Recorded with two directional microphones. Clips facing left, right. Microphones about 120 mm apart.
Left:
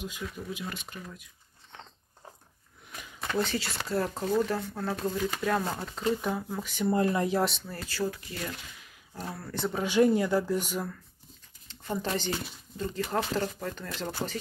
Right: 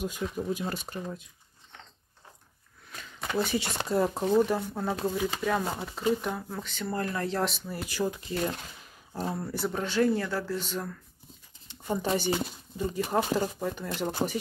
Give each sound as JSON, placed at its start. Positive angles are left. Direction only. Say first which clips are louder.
{"t": 0.2, "sound": "speech", "louder": "right 6 dB", "side_deg": -30}
{"t": 0.5, "sound": "speech", "louder": "right 6 dB", "side_deg": -40}
{"t": 3.2, "sound": "a sound", "louder": "even", "side_deg": -5}
{"t": 3.5, "sound": "speech", "louder": "right 3 dB", "side_deg": -20}
{"t": 7.3, "sound": "speech", "louder": "left 2 dB", "side_deg": 0}
{"t": 7.6, "sound": "speech", "louder": "right 2 dB", "side_deg": -15}
{"t": 8.4, "sound": "speech", "louder": "right 7 dB", "side_deg": -45}
{"t": 9.1, "sound": "speech", "louder": "right 6 dB", "side_deg": -25}
{"t": 9.5, "sound": "speech", "louder": "right 1 dB", "side_deg": -5}
{"t": 9.8, "sound": "speech", "louder": "left 3 dB", "side_deg": 15}
{"t": 11.6, "sound": "speech", "louder": "right 3 dB", "side_deg": -15}